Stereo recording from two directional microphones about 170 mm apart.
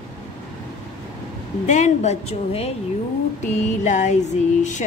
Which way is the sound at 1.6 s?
45° left (ahead or behind).